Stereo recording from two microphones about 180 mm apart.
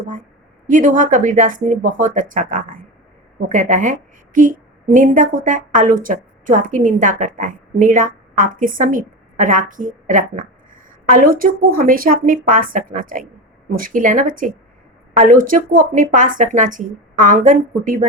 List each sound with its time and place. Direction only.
0.7 s a woman's voice: 45° right (ahead or behind)